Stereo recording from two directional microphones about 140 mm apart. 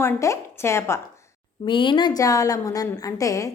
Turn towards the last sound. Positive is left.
turn(degrees=25)  # may be behind; listen again after turning